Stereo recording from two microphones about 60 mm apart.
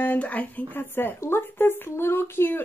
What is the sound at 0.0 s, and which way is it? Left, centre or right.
Speech, left.